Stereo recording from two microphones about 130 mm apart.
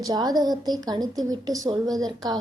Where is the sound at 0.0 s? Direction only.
30° right (ahead or behind).